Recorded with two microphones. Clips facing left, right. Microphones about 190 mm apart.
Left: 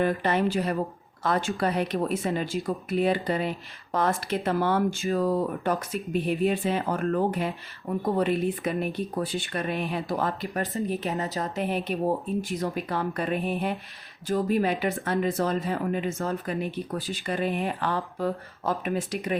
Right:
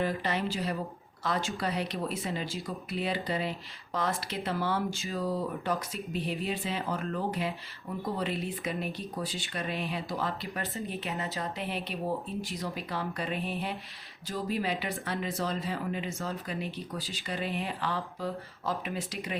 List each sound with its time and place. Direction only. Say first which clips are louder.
0.0 s speech: left 6 dB; 55° left (ahead or behind)